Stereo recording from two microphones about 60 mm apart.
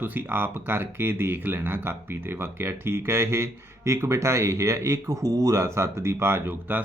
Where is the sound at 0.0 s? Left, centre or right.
Right.